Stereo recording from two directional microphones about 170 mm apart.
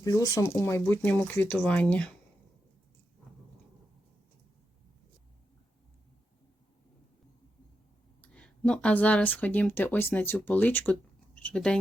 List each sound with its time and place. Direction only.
0.0 s speech: 20° left (ahead or behind)
8.2 s speech: 5° left (ahead or behind)